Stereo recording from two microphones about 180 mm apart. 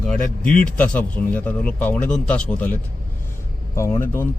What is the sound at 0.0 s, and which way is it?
A man's voice, 5° left (ahead or behind).